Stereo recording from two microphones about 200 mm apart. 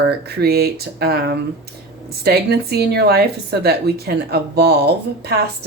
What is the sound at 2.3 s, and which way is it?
Speech, 55° right (ahead or behind).